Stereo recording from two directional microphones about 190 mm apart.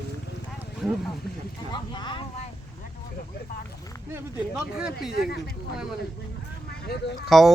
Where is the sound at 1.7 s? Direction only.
25° left (ahead or behind).